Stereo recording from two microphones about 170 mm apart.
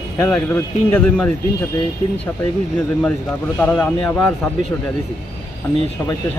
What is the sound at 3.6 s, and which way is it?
Speech, 5° left (ahead or behind).